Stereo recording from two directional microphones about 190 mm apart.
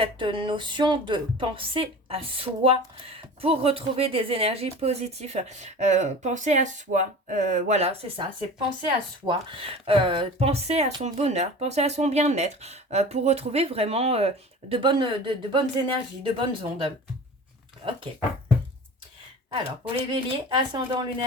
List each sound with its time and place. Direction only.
0.0 s a woman's voice: 25° right (ahead or behind)
20.1 s speech: 25° right (ahead or behind)